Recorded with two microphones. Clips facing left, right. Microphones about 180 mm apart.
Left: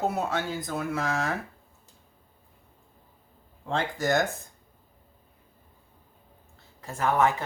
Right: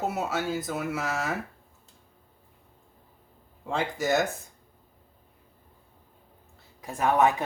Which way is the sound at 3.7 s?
10° right (ahead or behind).